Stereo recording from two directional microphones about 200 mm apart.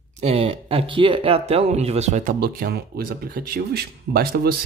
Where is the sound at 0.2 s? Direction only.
30° right (ahead or behind).